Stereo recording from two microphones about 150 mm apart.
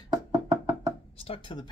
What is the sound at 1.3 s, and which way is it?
Speech, 35° left (ahead or behind).